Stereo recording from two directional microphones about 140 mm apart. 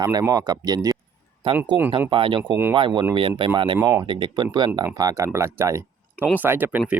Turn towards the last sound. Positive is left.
turn(degrees=-10)  # may be behind; listen again after turning